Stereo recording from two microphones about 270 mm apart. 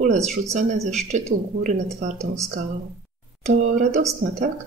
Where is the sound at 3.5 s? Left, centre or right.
Right.